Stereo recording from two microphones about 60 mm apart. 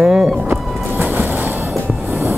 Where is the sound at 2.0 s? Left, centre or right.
Right.